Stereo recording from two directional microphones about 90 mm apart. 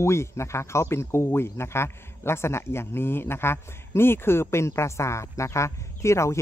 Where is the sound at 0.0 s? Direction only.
30° left (ahead or behind).